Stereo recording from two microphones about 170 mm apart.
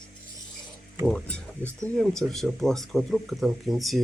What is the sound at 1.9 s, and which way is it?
Speech, centre (ahead or behind).